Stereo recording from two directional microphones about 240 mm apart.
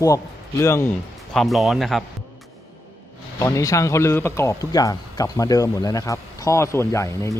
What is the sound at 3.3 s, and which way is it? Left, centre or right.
Speech, centre.